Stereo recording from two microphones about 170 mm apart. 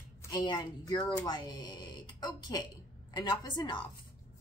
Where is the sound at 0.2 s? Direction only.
25° left (ahead or behind).